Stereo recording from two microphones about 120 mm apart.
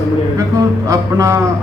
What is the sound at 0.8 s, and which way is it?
Speech, 25° right (ahead or behind).